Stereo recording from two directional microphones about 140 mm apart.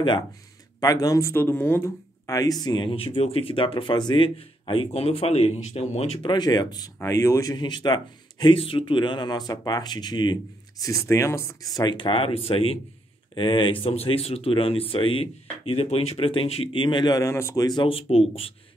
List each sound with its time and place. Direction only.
0.7 s speech: 25° left (ahead or behind); by 6.3 s 45° left (ahead or behind)
6.3 s speech: 30° left (ahead or behind); by 18.5 s 45° left (ahead or behind)